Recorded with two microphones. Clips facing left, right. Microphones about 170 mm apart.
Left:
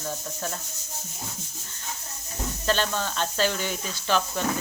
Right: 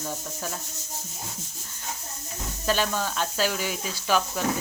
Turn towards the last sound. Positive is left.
turn(degrees=-5)  # may be behind; listen again after turning